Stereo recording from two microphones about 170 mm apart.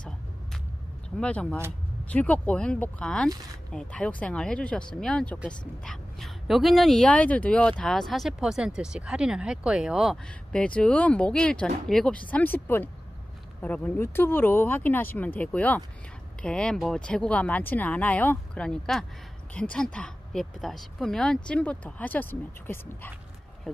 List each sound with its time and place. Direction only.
1.2 s speech: 5° left (ahead or behind)